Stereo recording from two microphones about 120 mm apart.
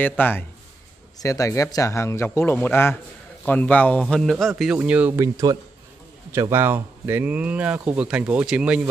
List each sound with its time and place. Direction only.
0.2 s a man's voice: 15° left (ahead or behind)
1.2 s a man's voice: 25° left (ahead or behind); by 4.5 s 5° left (ahead or behind)
4.7 s speech: 15° right (ahead or behind)
5.1 s speech: 30° right (ahead or behind); by 8.8 s 10° right (ahead or behind)